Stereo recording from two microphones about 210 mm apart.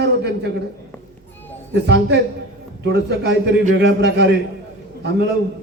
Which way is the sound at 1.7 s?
55° right (ahead or behind).